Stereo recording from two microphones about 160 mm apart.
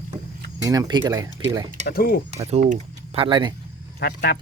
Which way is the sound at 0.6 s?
20° right (ahead or behind).